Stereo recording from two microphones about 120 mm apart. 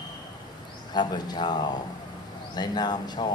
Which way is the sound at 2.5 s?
35° left (ahead or behind).